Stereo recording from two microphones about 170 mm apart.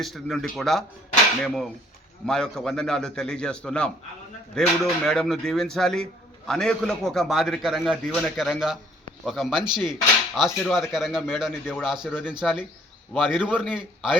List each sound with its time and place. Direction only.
0.0 s a man's voice: centre (ahead or behind)
9.6 s speech: 25° right (ahead or behind)
9.9 s a man's voice: centre (ahead or behind)